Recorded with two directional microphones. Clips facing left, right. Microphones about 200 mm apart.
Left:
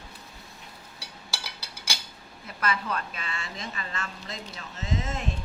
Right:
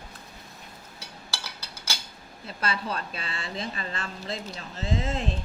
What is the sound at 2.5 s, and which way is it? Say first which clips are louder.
A woman's voice: left 1 dB; 30° right (ahead or behind).